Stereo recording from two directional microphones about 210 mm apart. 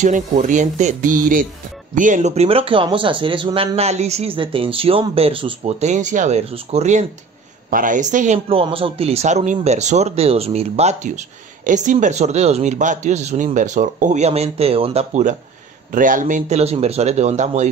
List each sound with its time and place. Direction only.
0.0 s speech: 35° right (ahead or behind)